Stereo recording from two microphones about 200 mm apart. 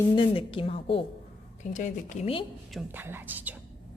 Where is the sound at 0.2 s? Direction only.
25° left (ahead or behind).